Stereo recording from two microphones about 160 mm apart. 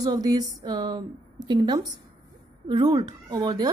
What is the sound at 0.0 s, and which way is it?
A woman's voice, 25° right (ahead or behind).